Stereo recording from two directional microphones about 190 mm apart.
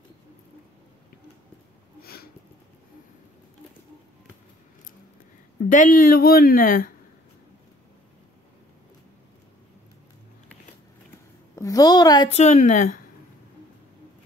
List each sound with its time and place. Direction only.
5.7 s speech: 45° left (ahead or behind)
11.5 s a woman's voice: 20° left (ahead or behind)
12.3 s a woman's voice: 35° left (ahead or behind)